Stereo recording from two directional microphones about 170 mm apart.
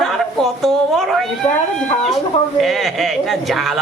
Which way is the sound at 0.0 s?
Centre (ahead or behind).